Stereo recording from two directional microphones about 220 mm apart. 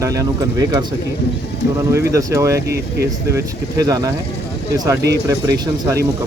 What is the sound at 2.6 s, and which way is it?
Speech, 45° right (ahead or behind).